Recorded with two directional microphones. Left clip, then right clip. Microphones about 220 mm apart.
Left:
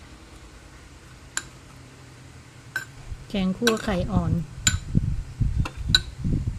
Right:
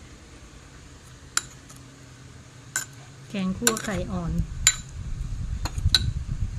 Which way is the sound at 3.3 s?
25° left (ahead or behind).